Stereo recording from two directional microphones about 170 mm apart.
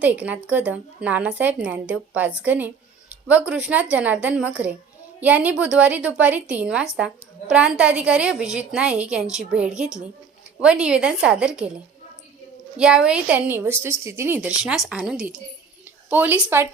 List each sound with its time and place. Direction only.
0.0 s a woman's voice: 10° right (ahead or behind)
12.7 s speech: 5° right (ahead or behind)